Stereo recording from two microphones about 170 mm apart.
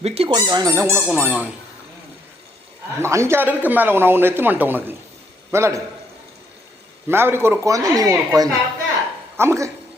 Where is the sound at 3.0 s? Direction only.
15° right (ahead or behind).